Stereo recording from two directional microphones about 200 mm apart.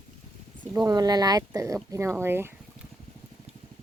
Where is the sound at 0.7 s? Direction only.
20° right (ahead or behind).